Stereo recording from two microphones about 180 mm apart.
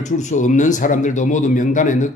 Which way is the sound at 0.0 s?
45° left (ahead or behind).